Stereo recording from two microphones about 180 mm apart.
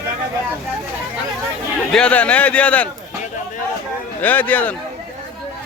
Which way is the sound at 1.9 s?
5° left (ahead or behind).